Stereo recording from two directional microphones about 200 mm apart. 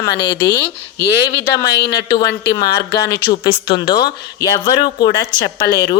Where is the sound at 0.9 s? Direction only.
55° left (ahead or behind).